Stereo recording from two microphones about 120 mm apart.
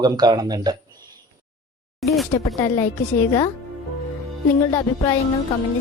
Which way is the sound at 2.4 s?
30° left (ahead or behind).